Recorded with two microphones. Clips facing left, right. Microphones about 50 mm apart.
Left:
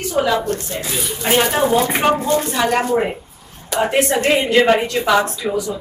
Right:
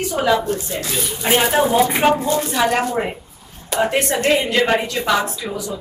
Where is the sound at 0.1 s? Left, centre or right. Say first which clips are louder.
Left 1 dB; centre.